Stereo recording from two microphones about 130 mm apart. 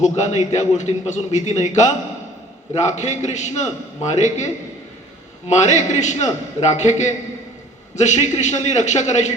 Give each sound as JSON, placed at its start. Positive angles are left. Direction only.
{"t": 0.0, "sound": "a man's voice", "side_deg": 65}
{"t": 5.5, "sound": "a man's voice", "side_deg": 65}